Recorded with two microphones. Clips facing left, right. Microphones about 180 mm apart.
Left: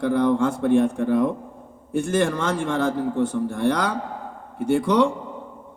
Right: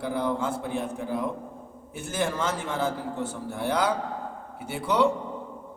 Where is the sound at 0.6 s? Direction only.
55° left (ahead or behind).